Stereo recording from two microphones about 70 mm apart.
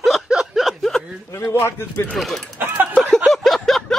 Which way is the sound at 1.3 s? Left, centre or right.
Left.